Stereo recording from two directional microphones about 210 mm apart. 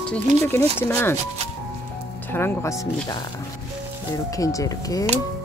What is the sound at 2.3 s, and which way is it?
Speech, 10° left (ahead or behind).